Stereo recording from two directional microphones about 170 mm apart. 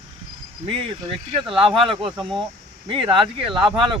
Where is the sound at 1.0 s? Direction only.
30° right (ahead or behind).